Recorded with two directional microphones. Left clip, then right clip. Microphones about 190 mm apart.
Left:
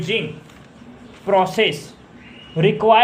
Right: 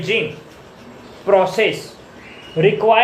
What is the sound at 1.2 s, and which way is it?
Speech, 35° left (ahead or behind).